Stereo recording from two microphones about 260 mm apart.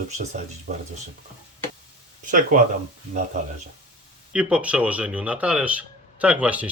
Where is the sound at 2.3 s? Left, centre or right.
Right.